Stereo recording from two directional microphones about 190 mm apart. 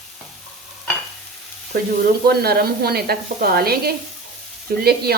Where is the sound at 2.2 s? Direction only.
55° right (ahead or behind).